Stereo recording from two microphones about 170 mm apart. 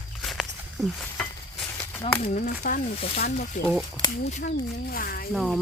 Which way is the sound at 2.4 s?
55° left (ahead or behind).